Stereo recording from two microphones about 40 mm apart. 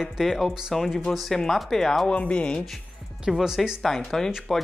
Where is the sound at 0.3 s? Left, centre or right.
Centre.